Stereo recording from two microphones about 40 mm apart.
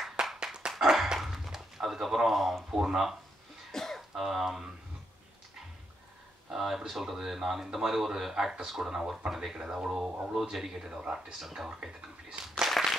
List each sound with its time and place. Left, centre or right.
0.4 s dog: centre
1.0 s a sound: centre
2.7 s speech: centre
3.7 s cough: centre
4.1 s speech: centre
6.5 s speech: centre
9.6 s speech: centre
11.0 s speech: right
11.3 s speech: centre
11.8 s a sound: right
12.6 s a sound: centre